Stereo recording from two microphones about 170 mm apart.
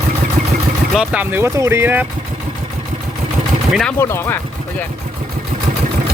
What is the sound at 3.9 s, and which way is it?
Speech, 15° left (ahead or behind).